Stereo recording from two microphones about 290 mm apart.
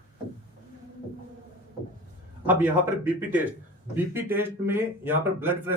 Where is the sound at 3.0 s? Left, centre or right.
Centre.